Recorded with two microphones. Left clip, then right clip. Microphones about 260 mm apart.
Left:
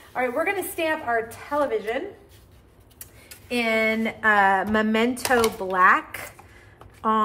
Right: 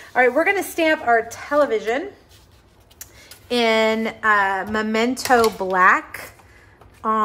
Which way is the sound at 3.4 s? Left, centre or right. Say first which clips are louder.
Right 5 dB; centre.